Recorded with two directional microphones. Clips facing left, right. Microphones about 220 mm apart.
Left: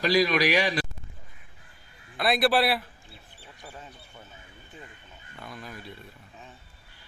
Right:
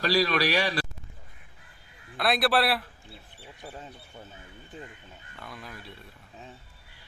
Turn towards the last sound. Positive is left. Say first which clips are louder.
# left 2 dB
turn(degrees=0)  # may be behind; listen again after turning